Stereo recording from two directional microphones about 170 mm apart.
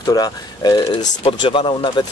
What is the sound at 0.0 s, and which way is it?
Speech, 20° left (ahead or behind).